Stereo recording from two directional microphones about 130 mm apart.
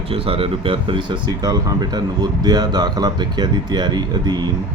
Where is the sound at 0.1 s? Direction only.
45° right (ahead or behind).